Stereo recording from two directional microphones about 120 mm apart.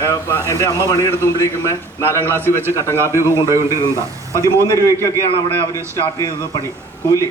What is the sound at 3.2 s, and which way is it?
Speech, 25° right (ahead or behind).